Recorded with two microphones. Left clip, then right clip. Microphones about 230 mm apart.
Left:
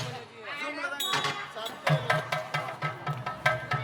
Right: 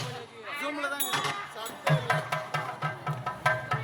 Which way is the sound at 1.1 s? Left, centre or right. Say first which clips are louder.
Left 1 dB; centre.